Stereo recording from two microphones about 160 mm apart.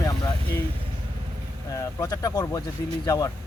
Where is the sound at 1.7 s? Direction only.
20° left (ahead or behind).